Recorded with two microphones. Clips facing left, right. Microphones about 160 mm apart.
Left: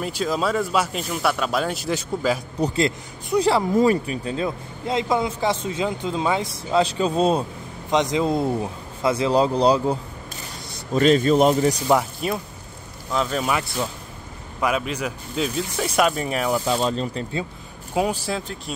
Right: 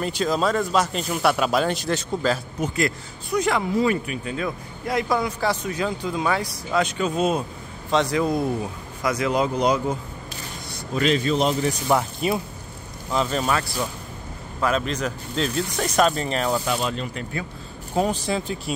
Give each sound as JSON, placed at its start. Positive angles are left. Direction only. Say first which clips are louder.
{"t": 0.0, "sound": "speech", "louder": "right 1 dB", "side_deg": 5}
{"t": 2.6, "sound": "a man's voice", "louder": "left 4 dB", "side_deg": 30}
{"t": 7.9, "sound": "a man's voice", "louder": "left 1 dB", "side_deg": 20}
{"t": 11.0, "sound": "speech", "louder": "left 5 dB", "side_deg": 40}
{"t": 12.2, "sound": "speech", "louder": "right 2 dB", "side_deg": 0}
{"t": 13.5, "sound": "a man's voice", "louder": "even", "side_deg": 20}
{"t": 16.6, "sound": "speech", "louder": "left 3 dB", "side_deg": 30}
{"t": 17.9, "sound": "speech", "louder": "even", "side_deg": 10}